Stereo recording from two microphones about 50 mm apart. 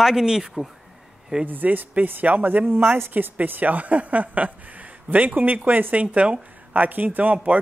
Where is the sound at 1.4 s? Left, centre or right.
Right.